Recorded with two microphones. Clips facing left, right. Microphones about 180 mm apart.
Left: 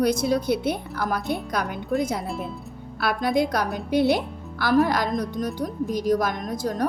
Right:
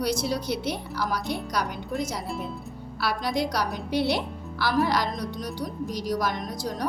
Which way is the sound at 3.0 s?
55° left (ahead or behind).